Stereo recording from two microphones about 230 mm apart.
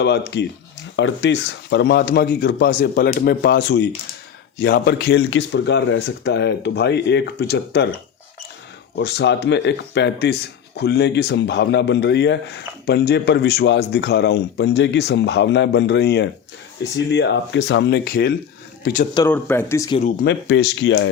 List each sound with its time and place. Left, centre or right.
0.0 s speech: left
9.0 s speech: left
19.3 s speech: centre
20.0 s speech: left
20.5 s speech: left